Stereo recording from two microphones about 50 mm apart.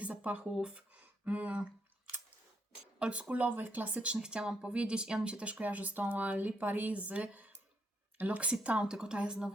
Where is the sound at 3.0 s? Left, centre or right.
Right.